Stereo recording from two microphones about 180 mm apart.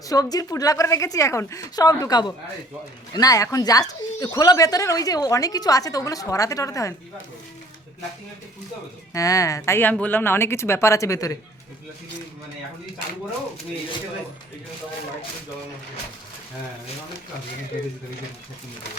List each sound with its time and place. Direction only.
0.0 s speech: 20° left (ahead or behind)
9.1 s speech: 20° left (ahead or behind)